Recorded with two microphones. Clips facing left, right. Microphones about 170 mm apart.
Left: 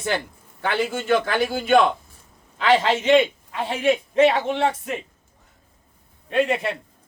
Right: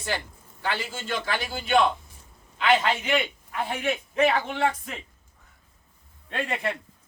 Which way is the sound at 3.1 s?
30° left (ahead or behind).